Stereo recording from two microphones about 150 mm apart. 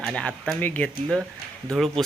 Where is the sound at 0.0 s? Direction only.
5° left (ahead or behind).